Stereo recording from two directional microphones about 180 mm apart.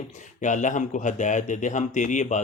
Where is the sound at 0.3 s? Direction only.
45° left (ahead or behind).